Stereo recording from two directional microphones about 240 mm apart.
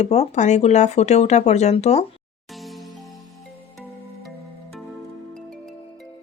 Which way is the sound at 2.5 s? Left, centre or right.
Centre.